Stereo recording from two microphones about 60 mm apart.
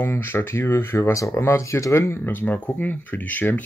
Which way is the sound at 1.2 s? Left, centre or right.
Left.